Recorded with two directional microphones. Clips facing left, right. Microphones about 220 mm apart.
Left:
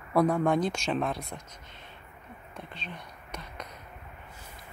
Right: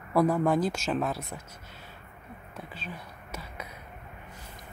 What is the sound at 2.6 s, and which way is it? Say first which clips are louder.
Whispering: right 1 dB; 5° right (ahead or behind).